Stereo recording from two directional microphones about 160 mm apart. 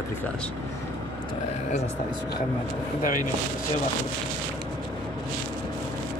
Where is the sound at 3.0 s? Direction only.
55° left (ahead or behind).